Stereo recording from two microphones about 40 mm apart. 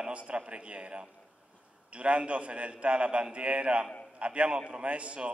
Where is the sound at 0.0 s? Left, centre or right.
Right.